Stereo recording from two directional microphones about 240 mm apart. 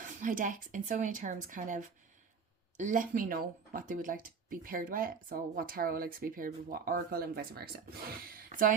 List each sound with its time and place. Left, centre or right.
0.2 s speech: right